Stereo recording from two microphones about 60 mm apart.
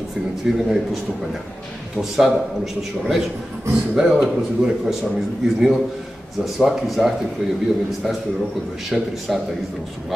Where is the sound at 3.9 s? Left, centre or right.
Centre.